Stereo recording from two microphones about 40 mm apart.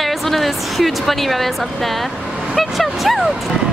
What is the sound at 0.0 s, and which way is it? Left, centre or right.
A woman's voice, centre.